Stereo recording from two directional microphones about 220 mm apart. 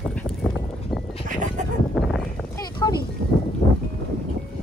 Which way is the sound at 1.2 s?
35° right (ahead or behind).